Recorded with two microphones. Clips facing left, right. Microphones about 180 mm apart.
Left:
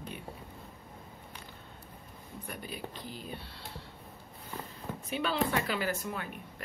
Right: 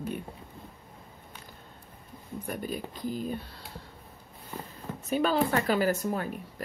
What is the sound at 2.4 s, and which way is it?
Speech, 45° right (ahead or behind).